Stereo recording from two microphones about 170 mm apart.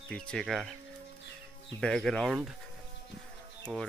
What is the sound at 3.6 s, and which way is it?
Speech, 5° left (ahead or behind).